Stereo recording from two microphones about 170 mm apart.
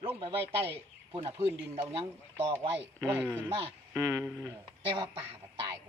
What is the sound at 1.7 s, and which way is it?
Speech, 35° right (ahead or behind).